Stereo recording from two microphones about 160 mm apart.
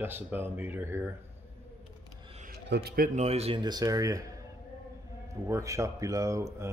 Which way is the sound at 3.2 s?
40° right (ahead or behind).